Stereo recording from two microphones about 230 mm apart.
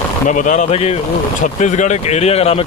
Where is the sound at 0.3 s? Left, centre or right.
Left.